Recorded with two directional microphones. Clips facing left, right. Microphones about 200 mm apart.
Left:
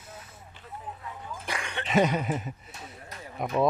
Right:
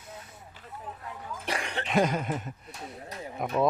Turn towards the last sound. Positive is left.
turn(degrees=0)  # may be behind; listen again after turning